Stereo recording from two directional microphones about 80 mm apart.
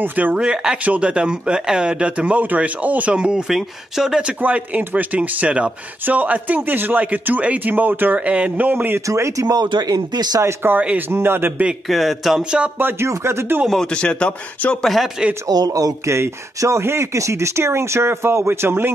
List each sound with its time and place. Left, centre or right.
0.0 s speech: right
9.0 s speech: right
9.6 s speech: right
10.4 s speech: right
11.9 s speech: centre
12.4 s speech: centre
12.7 s speech: right
13.7 s a man's voice: centre
15.4 s speech: right
16.2 s speech: right